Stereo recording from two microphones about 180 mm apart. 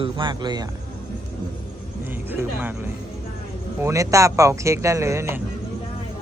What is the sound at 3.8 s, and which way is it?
Speech, 15° right (ahead or behind).